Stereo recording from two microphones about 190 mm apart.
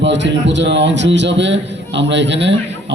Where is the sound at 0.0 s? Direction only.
70° right (ahead or behind).